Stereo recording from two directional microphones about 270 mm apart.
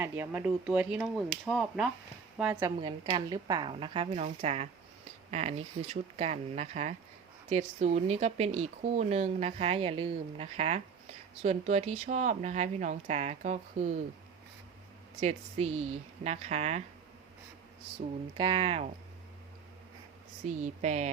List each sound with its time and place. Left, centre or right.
0.0 s a woman's voice: centre; by 13.9 s right
15.2 s speech: right
18.3 s speech: centre
20.6 s speech: right